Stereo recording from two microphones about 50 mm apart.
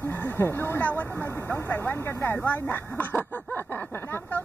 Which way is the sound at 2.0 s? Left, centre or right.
Left.